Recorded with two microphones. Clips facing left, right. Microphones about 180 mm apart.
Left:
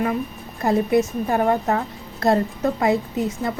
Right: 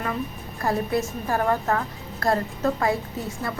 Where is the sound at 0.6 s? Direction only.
20° left (ahead or behind).